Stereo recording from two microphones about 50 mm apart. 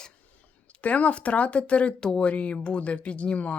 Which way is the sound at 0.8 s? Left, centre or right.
Left.